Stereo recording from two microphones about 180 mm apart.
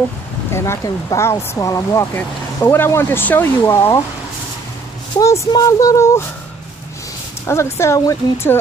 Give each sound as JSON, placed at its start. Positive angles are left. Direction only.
{"t": 0.5, "sound": "speech", "side_deg": 15}
{"t": 5.2, "sound": "speech", "side_deg": 15}
{"t": 7.4, "sound": "speech", "side_deg": 15}